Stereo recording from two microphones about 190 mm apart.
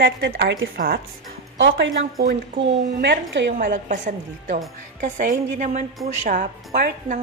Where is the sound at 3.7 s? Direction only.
45° right (ahead or behind).